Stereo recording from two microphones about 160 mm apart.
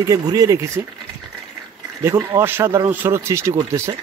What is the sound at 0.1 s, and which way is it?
Speech, 20° right (ahead or behind).